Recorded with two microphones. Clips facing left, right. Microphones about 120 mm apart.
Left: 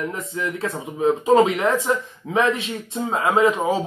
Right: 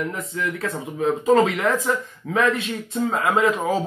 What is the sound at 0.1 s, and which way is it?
Speech, 25° left (ahead or behind).